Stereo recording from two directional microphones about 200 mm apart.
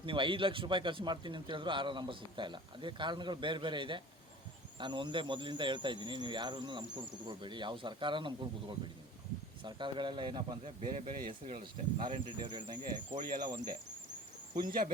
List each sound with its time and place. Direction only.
0.0 s a man's voice: 25° right (ahead or behind)
10.9 s speech: 35° right (ahead or behind)
11.3 s a man's voice: 25° right (ahead or behind)
13.1 s speech: 40° right (ahead or behind)
14.6 s speech: 45° right (ahead or behind)